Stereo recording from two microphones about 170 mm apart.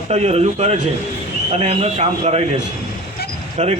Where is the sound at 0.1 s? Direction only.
35° right (ahead or behind).